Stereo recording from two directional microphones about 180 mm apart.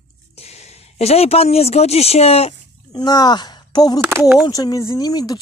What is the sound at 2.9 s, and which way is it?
Speech, 20° left (ahead or behind).